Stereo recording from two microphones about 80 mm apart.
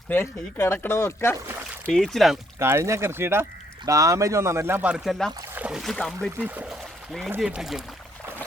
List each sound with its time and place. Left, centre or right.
0.1 s speech: left
1.9 s speech: centre
2.6 s speech: right
3.8 s speech: right
4.8 s speech: centre
5.0 s speech: centre
6.4 s speech: centre
6.7 s pour: centre
7.3 s speech: centre